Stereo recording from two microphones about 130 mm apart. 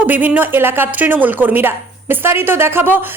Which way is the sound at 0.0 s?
15° right (ahead or behind).